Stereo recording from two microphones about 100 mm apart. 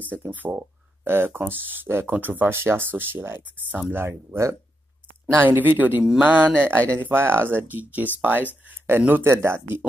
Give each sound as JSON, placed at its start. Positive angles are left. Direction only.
{"t": 0.1, "sound": "speech", "side_deg": -20}